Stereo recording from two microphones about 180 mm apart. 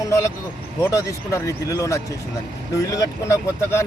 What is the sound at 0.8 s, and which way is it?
Speech, 15° left (ahead or behind).